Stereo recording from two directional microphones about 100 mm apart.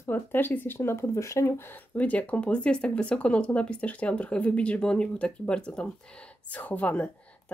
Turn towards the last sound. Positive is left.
turn(degrees=15)  # may be behind; listen again after turning